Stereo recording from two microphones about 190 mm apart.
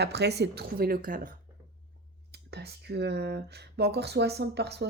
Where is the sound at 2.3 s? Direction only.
60° right (ahead or behind).